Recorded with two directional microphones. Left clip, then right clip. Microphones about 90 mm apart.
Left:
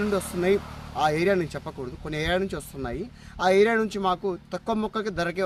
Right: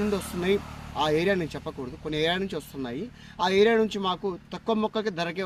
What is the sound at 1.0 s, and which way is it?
Speech, 50° left (ahead or behind).